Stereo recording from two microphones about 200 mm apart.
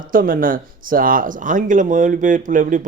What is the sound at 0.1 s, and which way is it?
A man's voice, 45° right (ahead or behind).